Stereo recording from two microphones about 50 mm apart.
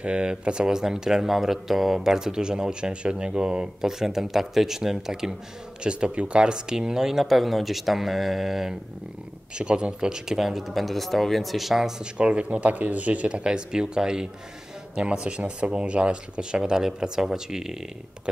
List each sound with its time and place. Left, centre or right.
0.0 s speech: centre
4.0 s speech: centre
9.6 s speech: centre
12.0 s speech: right